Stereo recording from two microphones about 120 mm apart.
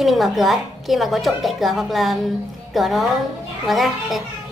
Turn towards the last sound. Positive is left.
turn(degrees=0)  # may be behind; listen again after turning